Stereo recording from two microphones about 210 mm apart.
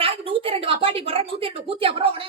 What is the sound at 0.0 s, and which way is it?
A woman's voice, 25° right (ahead or behind).